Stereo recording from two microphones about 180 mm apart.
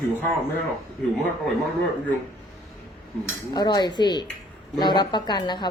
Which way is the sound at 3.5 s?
20° left (ahead or behind).